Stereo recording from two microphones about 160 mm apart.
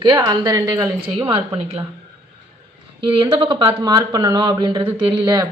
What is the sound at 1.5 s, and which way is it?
Speech, 35° right (ahead or behind).